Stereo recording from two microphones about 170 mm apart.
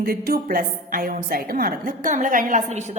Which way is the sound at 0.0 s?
60° right (ahead or behind).